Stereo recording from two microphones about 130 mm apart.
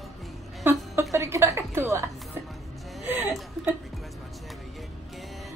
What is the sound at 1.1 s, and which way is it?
Speech, 20° right (ahead or behind).